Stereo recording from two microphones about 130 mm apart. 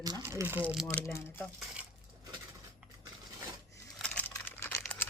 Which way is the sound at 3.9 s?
10° left (ahead or behind).